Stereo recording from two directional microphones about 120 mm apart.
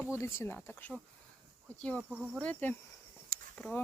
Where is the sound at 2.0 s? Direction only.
10° right (ahead or behind).